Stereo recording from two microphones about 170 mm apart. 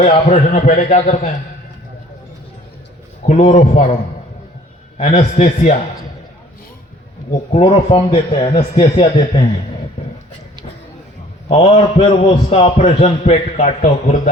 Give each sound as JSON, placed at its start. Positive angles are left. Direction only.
{"t": 0.0, "sound": "a man's voice", "side_deg": 40}
{"t": 3.2, "sound": "a man's voice", "side_deg": 40}
{"t": 4.9, "sound": "a man's voice", "side_deg": 35}
{"t": 7.5, "sound": "a man's voice", "side_deg": 35}
{"t": 11.4, "sound": "a man's voice", "side_deg": 35}